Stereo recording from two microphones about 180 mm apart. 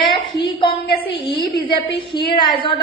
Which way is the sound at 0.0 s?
25° left (ahead or behind).